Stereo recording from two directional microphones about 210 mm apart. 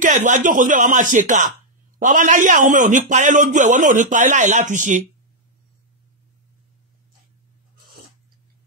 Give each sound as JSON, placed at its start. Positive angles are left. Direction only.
{"t": 0.0, "sound": "a man's voice", "side_deg": -35}